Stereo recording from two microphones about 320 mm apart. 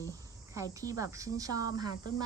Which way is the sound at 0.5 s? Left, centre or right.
Centre.